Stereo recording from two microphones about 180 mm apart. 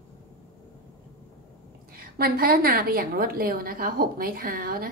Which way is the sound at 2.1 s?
55° right (ahead or behind).